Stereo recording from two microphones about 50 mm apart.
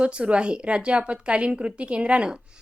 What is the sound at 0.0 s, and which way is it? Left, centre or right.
A woman's voice, right.